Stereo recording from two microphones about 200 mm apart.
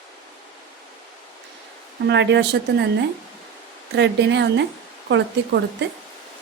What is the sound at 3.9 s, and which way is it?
Speech, 60° right (ahead or behind).